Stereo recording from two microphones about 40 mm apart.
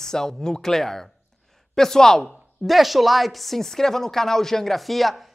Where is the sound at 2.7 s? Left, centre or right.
Centre.